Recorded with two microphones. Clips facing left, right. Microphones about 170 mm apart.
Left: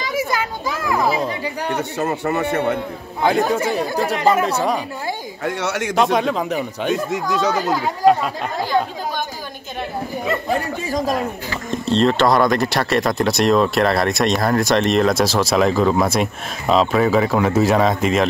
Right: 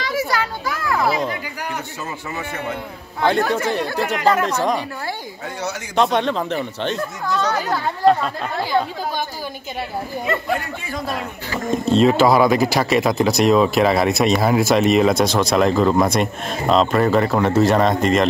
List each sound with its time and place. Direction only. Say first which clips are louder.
0.0 s children playing: even; 20° left (ahead or behind)
1.3 s speech: left 4 dB; 30° left (ahead or behind)
1.8 s a man's voice: left 8 dB; 65° left (ahead or behind)
3.2 s speech: left 1 dB; 10° left (ahead or behind)
5.4 s speech: left 8 dB; 75° left (ahead or behind)
5.9 s speech: right 1 dB; 5° left (ahead or behind)
10.5 s speech: left 3 dB; 40° left (ahead or behind)
11.9 s speech: right 1 dB; 5° right (ahead or behind)